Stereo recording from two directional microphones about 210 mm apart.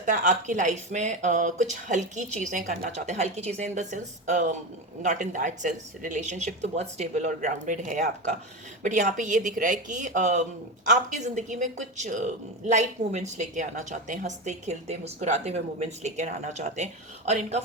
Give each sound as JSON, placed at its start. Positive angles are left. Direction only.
{"t": 0.0, "sound": "speech", "side_deg": -35}